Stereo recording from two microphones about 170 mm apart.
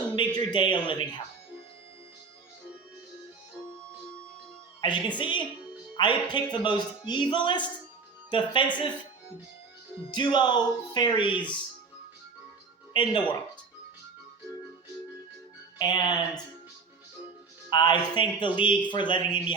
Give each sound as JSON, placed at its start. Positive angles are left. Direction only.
{"t": 0.3, "sound": "speech", "side_deg": 25}
{"t": 4.8, "sound": "speech", "side_deg": 25}
{"t": 10.1, "sound": "speech", "side_deg": 25}
{"t": 12.9, "sound": "speech", "side_deg": 30}
{"t": 15.8, "sound": "speech", "side_deg": 25}
{"t": 17.7, "sound": "speech", "side_deg": 25}